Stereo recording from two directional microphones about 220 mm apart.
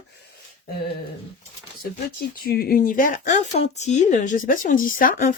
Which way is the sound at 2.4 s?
45° left (ahead or behind).